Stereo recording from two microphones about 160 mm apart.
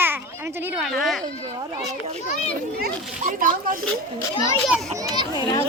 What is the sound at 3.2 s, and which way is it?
Speech, 55° right (ahead or behind).